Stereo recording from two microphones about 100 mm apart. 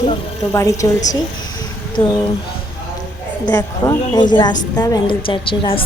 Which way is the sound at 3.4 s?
40° left (ahead or behind).